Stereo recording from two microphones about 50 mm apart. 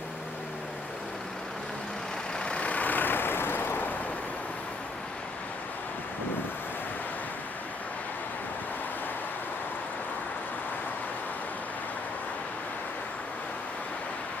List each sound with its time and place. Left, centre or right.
2.3 s vehicle: left